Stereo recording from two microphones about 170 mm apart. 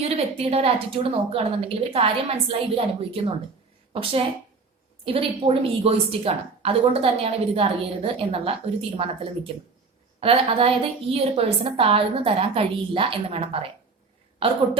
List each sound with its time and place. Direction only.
0.0 s a woman's voice: 35° right (ahead or behind)